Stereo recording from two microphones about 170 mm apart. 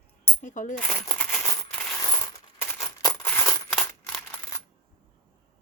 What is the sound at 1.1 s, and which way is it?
Coin, 10° left (ahead or behind).